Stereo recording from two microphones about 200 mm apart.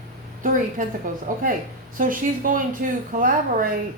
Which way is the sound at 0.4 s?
45° right (ahead or behind).